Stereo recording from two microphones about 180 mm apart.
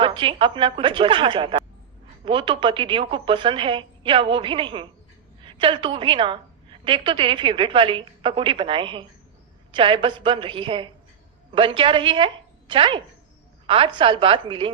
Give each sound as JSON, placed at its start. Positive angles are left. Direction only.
{"t": 0.0, "sound": "a woman's voice", "side_deg": -30}